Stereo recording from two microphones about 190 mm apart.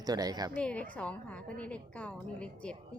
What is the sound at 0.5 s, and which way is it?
A woman's voice, 5° left (ahead or behind).